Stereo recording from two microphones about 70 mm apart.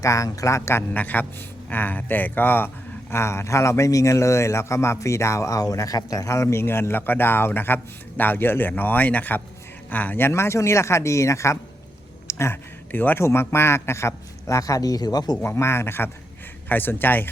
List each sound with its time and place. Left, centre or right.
0.0 s a man's voice: left
0.9 s a man's voice: left
3.1 s a man's voice: left
12.9 s a man's voice: left
13.2 s a man's voice: left
15.4 s a man's voice: left